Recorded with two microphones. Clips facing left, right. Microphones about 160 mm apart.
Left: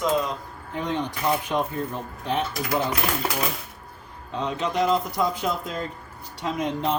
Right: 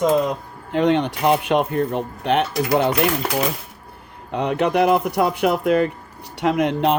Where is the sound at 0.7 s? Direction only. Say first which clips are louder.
Right 10 dB; 75° right (ahead or behind).